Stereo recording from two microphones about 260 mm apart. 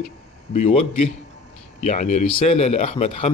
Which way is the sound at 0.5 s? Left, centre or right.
Left.